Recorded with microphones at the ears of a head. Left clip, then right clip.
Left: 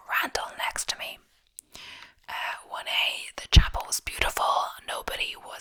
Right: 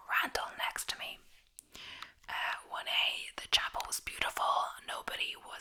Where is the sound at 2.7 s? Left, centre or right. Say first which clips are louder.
Left 7 dB; left.